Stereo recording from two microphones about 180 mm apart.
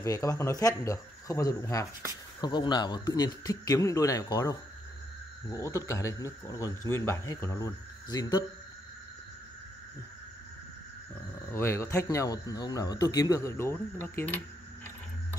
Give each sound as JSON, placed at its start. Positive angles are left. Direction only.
{"t": 0.0, "sound": "a man's voice", "side_deg": 20}
{"t": 11.3, "sound": "speech", "side_deg": 10}